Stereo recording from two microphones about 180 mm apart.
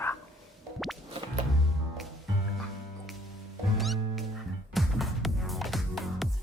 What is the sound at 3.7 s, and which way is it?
Cat, centre (ahead or behind).